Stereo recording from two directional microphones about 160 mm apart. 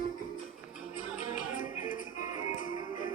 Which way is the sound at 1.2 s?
55° left (ahead or behind).